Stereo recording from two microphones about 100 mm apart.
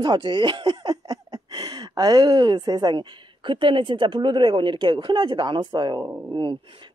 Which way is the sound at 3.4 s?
55° right (ahead or behind).